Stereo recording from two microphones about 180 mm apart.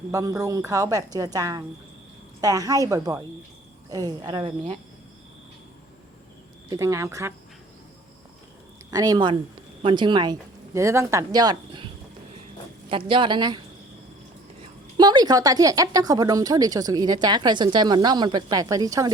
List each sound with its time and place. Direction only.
0.1 s speech: 20° right (ahead or behind)
6.7 s speech: 15° right (ahead or behind)
8.9 s a woman's voice: 20° right (ahead or behind)
12.9 s speech: 30° right (ahead or behind)
14.9 s speech: 25° right (ahead or behind)